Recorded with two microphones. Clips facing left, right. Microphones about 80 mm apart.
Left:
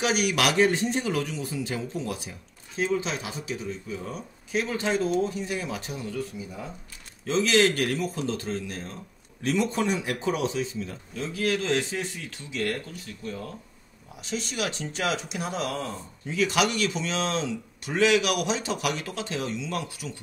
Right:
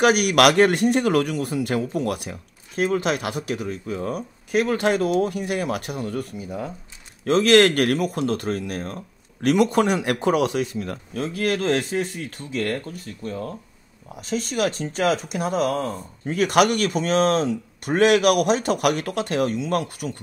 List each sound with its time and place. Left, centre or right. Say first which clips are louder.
0.0 s speech: right 8 dB; right